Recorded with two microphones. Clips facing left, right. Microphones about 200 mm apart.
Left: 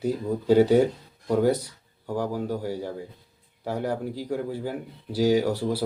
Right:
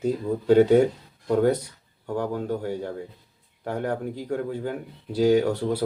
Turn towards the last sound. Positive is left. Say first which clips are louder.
# right 2 dB
turn(degrees=5)  # may be behind; listen again after turning